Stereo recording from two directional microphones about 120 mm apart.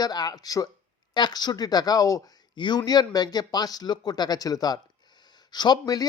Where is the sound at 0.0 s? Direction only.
35° left (ahead or behind).